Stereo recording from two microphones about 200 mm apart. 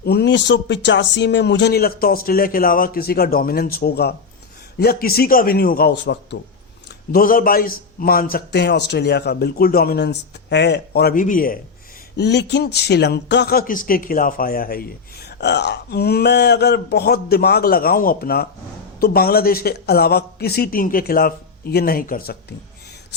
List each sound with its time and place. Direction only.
0.0 s a man's voice: 55° left (ahead or behind)
7.1 s a man's voice: 45° left (ahead or behind)
12.1 s a man's voice: 60° left (ahead or behind)
15.3 s a man's voice: 60° left (ahead or behind)